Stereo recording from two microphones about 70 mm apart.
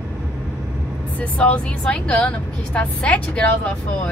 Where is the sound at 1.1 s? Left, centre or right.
Centre.